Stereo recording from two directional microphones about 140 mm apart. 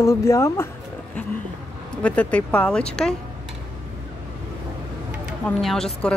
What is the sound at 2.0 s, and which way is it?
Speech, 10° left (ahead or behind).